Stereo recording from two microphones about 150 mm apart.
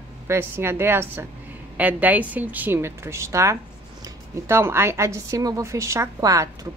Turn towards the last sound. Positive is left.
turn(degrees=-25)  # may be behind; listen again after turning